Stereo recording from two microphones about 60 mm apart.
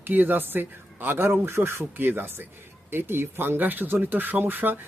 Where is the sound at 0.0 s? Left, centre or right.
Right.